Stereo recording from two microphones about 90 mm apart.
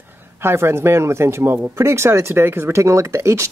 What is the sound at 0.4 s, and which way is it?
Speech, 30° right (ahead or behind).